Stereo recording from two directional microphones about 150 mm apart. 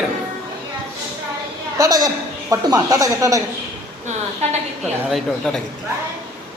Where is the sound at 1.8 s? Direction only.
25° right (ahead or behind).